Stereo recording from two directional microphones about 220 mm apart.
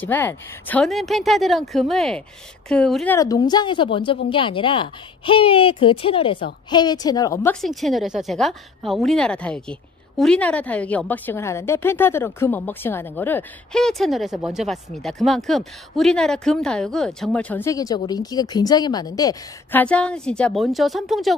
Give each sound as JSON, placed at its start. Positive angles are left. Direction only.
{"t": 0.0, "sound": "a woman's voice", "side_deg": 10}
{"t": 3.2, "sound": "speech", "side_deg": 15}
{"t": 7.6, "sound": "a woman's voice", "side_deg": 0}
{"t": 19.8, "sound": "a woman's voice", "side_deg": 5}